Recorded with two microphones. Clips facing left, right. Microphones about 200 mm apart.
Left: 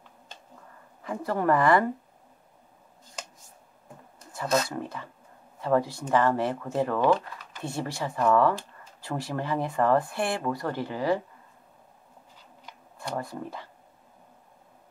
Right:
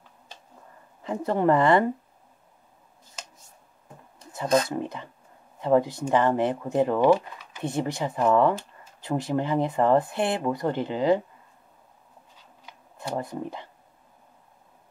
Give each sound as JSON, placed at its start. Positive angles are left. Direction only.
{"t": 1.0, "sound": "speech", "side_deg": -25}
{"t": 4.3, "sound": "speech", "side_deg": -20}
{"t": 13.1, "sound": "speech", "side_deg": -20}